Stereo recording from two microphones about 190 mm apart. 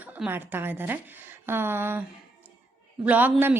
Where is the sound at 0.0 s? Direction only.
10° right (ahead or behind).